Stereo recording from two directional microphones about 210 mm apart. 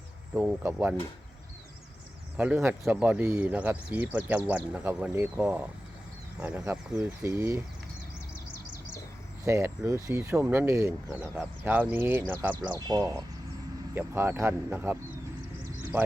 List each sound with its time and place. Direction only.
0.3 s speech: 10° right (ahead or behind)
2.4 s speech: 10° right (ahead or behind)
9.4 s speech: 10° right (ahead or behind)
15.8 s a sound: 10° right (ahead or behind)